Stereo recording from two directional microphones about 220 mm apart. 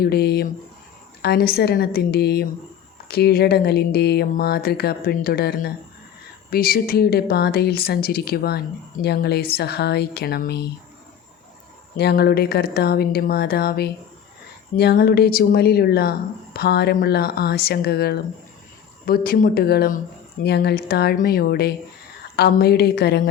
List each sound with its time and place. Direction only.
0.0 s speech: 45° left (ahead or behind)
11.9 s speech: 45° left (ahead or behind)